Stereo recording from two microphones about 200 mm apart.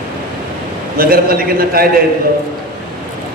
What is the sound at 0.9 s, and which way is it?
Speech, 45° right (ahead or behind).